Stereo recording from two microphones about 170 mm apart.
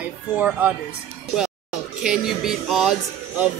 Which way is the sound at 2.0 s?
5° right (ahead or behind).